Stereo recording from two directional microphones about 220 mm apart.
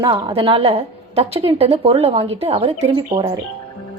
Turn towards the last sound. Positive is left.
turn(degrees=-20)  # may be behind; listen again after turning